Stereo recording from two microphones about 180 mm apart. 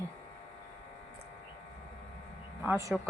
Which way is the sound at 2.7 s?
15° right (ahead or behind).